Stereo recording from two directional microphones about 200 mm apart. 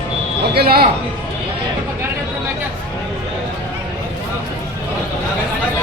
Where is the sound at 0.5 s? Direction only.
50° right (ahead or behind).